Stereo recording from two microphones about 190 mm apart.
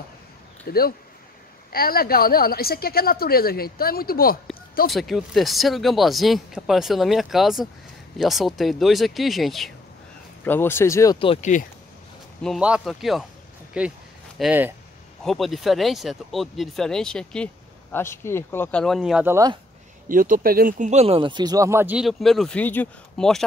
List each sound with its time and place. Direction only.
0.7 s a woman's voice: 50° left (ahead or behind)
4.9 s speech: centre (ahead or behind)
10.4 s speech: 10° left (ahead or behind)
11.1 s speech: 30° left (ahead or behind)
12.4 s speech: 5° right (ahead or behind)
20.1 s speech: 45° right (ahead or behind); by 23.4 s 5° left (ahead or behind)